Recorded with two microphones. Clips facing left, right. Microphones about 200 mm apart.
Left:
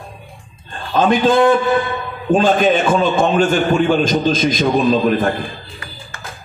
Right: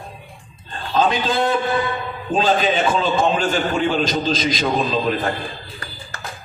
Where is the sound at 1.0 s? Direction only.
55° left (ahead or behind).